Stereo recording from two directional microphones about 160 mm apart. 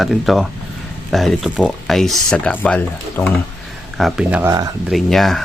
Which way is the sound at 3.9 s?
5° right (ahead or behind).